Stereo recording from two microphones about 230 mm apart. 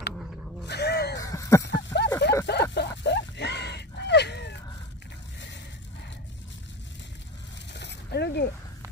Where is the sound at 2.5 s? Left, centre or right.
Left.